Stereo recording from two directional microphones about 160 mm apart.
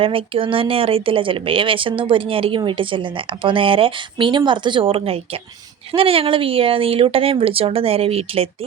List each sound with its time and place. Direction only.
0.0 s a woman's voice: 35° right (ahead or behind)